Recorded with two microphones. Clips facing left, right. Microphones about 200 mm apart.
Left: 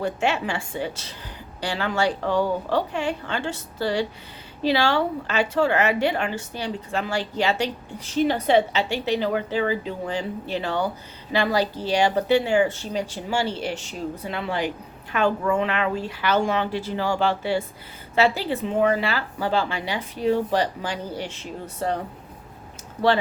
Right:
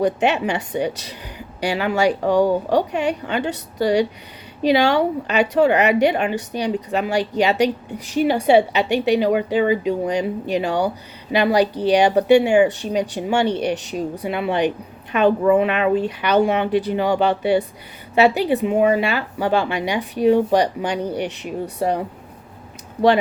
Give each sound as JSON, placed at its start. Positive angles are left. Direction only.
{"t": 0.0, "sound": "a woman's voice", "side_deg": -20}